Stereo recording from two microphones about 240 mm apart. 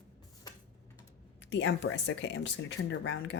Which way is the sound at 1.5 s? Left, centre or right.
Left.